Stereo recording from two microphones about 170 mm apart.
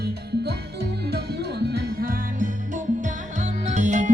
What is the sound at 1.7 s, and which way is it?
Music, 60° right (ahead or behind).